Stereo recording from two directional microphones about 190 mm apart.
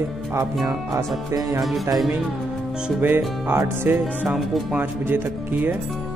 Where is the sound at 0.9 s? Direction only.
15° right (ahead or behind).